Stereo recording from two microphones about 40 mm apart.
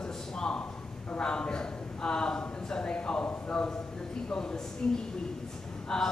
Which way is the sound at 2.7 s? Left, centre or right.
Left.